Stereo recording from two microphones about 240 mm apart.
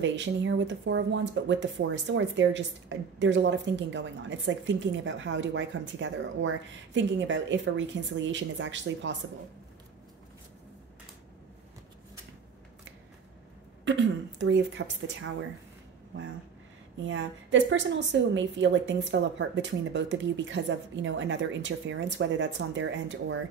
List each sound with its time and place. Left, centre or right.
0.0 s speech: right
13.8 s speech: right
17.0 s speech: right